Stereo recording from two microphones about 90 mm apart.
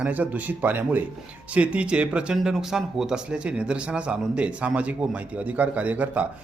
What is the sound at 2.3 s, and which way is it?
Speech, 5° right (ahead or behind).